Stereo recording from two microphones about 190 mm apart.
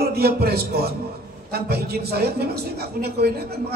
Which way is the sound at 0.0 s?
55° right (ahead or behind).